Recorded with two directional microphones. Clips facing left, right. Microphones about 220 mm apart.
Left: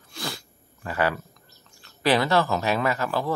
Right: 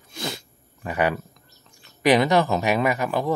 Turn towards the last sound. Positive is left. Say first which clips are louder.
# right 3 dB
turn(degrees=-15)  # may be behind; listen again after turning